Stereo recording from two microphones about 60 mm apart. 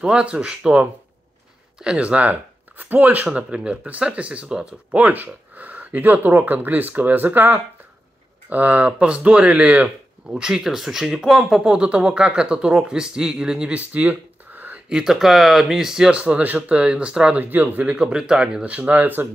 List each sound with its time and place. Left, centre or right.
0.0 s speech: centre
10.3 s speech: centre
13.7 s a sound: right
14.9 s speech: centre
16.1 s speech: right
17.4 s speech: right
17.9 s speech: centre; by 19.2 s right